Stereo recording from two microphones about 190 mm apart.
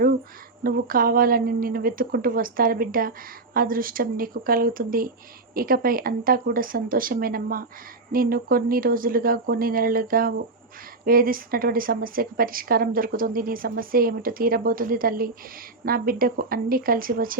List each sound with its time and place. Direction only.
0.6 s a woman's voice: 50° right (ahead or behind)